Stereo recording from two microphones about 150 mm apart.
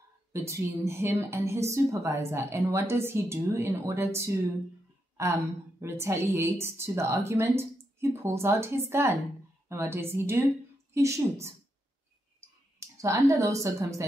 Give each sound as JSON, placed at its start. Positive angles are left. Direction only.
{"t": 0.3, "sound": "a woman's voice", "side_deg": -20}
{"t": 12.8, "sound": "a sound", "side_deg": -20}
{"t": 13.3, "sound": "a woman's voice", "side_deg": -20}